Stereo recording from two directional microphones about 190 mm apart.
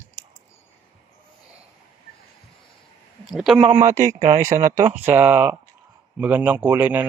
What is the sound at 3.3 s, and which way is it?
Speech, centre (ahead or behind).